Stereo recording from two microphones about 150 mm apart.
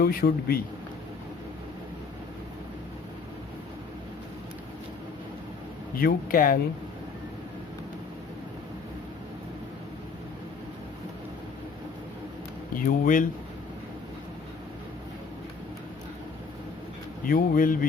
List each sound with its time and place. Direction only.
0.0 s speech: 90° left
6.0 s a man's voice: 75° left (ahead or behind)
12.8 s speech: 60° left (ahead or behind)
17.2 s a man's voice: 70° left (ahead or behind)